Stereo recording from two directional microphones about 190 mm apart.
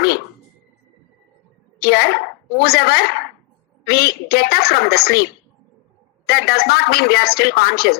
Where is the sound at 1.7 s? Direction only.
55° left (ahead or behind).